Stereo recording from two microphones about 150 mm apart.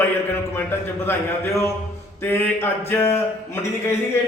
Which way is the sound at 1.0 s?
15° left (ahead or behind).